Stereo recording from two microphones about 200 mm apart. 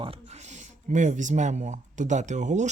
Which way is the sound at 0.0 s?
30° right (ahead or behind).